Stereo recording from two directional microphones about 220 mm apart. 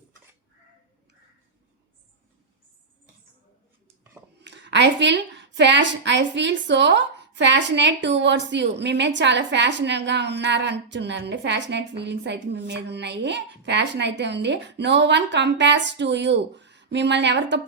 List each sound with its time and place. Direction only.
4.4 s a woman's voice: 50° right (ahead or behind)